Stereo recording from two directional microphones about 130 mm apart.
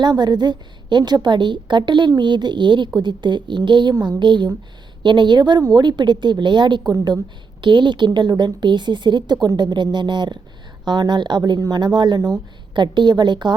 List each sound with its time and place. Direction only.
0.0 s a woman's voice: 35° right (ahead or behind)